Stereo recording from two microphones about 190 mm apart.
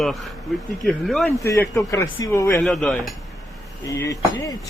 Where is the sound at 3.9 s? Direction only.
15° left (ahead or behind).